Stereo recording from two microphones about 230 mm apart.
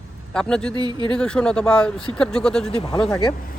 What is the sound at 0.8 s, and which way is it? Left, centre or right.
Speech, centre.